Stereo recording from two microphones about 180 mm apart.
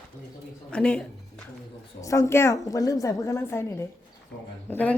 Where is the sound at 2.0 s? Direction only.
15° left (ahead or behind).